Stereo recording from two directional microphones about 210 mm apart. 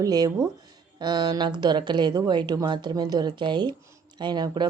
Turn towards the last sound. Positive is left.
turn(degrees=-20)  # may be behind; listen again after turning